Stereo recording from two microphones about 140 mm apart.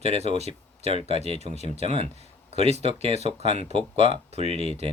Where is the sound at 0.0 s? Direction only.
50° right (ahead or behind).